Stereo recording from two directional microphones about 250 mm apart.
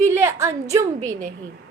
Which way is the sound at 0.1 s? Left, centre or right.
Centre.